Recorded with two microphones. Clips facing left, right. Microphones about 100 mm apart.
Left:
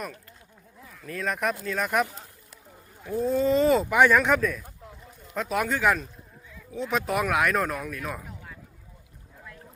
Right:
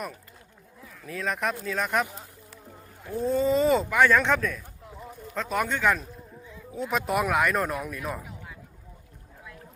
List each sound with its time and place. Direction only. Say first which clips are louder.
0.9 s speech: even; centre (ahead or behind)
3.1 s speech: left 1 dB; centre (ahead or behind)
3.8 s speech: left 1 dB; 15° left (ahead or behind)
4.2 s speech: left 2 dB; 5° left (ahead or behind)